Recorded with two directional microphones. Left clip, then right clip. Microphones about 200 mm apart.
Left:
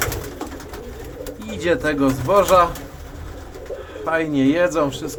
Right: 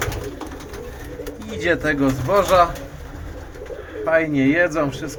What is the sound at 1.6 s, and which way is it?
Speech, 5° left (ahead or behind).